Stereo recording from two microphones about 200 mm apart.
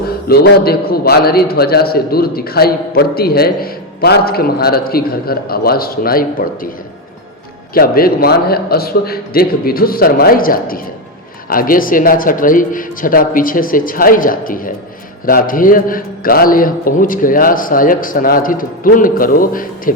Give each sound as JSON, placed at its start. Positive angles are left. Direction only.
{"t": 0.3, "sound": "a man's voice", "side_deg": 50}
{"t": 7.7, "sound": "a man's voice", "side_deg": 50}